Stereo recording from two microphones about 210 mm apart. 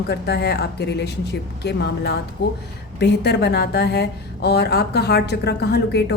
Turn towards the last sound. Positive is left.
turn(degrees=50)  # may be behind; listen again after turning